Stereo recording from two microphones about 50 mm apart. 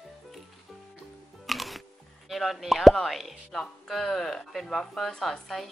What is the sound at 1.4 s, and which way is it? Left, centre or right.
Music, centre.